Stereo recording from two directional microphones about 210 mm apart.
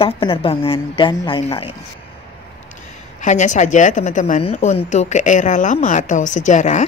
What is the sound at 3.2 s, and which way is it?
A woman's voice, 35° left (ahead or behind).